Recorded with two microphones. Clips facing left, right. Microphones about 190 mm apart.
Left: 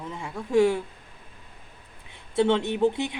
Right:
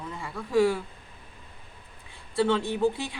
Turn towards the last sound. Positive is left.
turn(degrees=20)  # may be behind; listen again after turning